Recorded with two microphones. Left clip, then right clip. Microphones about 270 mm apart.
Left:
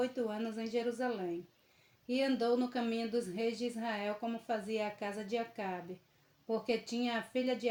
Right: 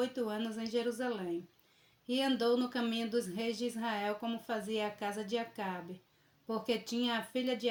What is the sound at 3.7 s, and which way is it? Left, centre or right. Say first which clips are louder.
Speech: right 2 dB; right.